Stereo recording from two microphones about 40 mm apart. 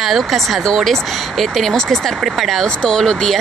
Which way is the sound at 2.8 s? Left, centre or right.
Centre.